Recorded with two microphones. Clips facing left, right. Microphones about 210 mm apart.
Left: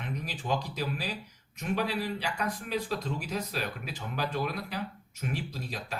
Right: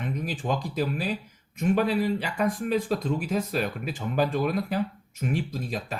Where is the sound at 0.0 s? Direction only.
50° right (ahead or behind).